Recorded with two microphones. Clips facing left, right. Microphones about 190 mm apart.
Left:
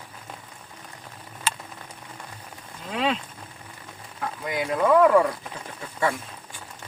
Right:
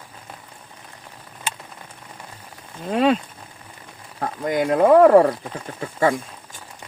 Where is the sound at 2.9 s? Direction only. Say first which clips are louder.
Right 8 dB; 45° right (ahead or behind).